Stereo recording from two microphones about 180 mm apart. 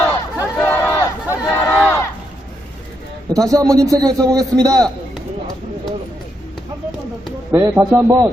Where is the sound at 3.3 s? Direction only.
20° right (ahead or behind).